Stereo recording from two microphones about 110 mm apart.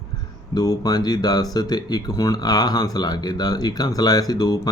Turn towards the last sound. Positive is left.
turn(degrees=35)  # may be behind; listen again after turning